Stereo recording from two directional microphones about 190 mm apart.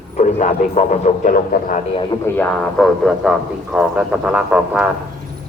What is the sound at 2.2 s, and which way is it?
Speech, 10° left (ahead or behind).